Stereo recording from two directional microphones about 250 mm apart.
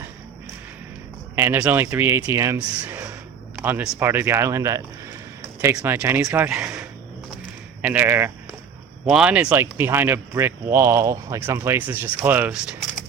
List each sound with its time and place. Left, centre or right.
1.4 s speech: centre